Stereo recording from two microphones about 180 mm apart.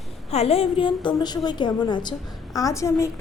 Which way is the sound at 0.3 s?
35° left (ahead or behind).